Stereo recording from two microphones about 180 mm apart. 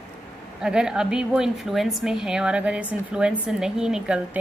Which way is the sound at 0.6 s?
5° right (ahead or behind).